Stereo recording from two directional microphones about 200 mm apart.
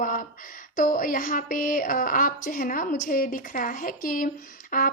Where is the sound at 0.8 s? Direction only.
45° left (ahead or behind).